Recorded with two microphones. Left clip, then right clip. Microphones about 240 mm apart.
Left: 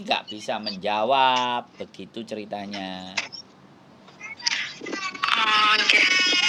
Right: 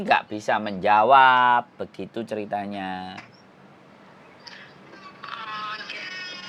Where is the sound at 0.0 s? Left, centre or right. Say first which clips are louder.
Right 5 dB; centre.